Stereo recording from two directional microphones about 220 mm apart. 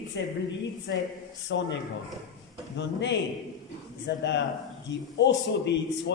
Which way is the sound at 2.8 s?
55° left (ahead or behind).